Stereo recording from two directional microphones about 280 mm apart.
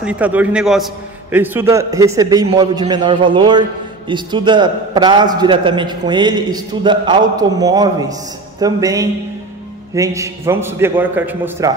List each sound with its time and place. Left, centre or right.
0.0 s a man's voice: centre